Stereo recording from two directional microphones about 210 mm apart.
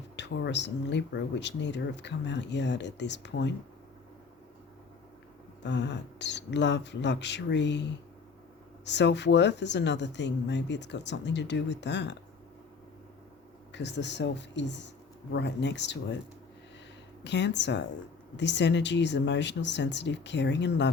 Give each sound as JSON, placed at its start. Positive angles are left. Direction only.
{"t": 0.2, "sound": "speech", "side_deg": 55}
{"t": 5.6, "sound": "speech", "side_deg": 55}
{"t": 13.7, "sound": "speech", "side_deg": 55}
{"t": 17.2, "sound": "speech", "side_deg": 55}